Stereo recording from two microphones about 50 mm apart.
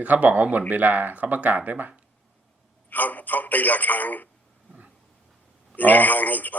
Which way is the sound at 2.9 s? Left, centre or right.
Left.